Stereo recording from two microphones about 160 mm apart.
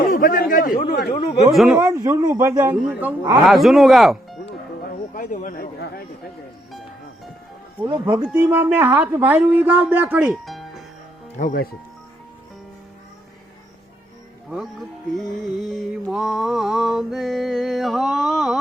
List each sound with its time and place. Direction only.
0.1 s a sound: 60° left (ahead or behind)
1.5 s music: 5° right (ahead or behind)
1.8 s speech: 20° right (ahead or behind)
3.4 s music: centre (ahead or behind)
4.8 s a sound: 55° left (ahead or behind)
7.8 s speech: 15° right (ahead or behind)
11.3 s speech: 60° left (ahead or behind)
14.5 s music: centre (ahead or behind)